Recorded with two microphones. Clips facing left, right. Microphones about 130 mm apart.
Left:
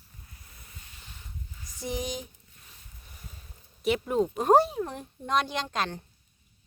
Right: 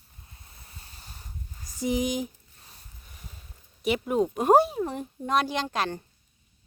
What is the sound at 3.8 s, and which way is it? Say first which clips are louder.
Speech: right 1 dB; 5° right (ahead or behind).